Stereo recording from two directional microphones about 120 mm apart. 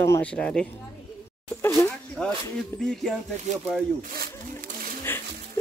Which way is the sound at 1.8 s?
10° left (ahead or behind).